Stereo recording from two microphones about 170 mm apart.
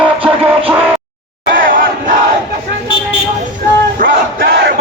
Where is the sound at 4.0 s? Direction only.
65° right (ahead or behind).